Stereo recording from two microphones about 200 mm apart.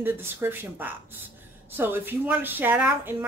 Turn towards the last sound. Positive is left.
turn(degrees=-10)  # may be behind; listen again after turning